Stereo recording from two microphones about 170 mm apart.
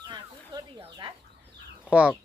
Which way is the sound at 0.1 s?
25° right (ahead or behind).